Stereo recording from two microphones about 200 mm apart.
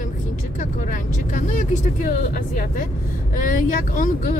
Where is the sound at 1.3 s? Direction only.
40° left (ahead or behind).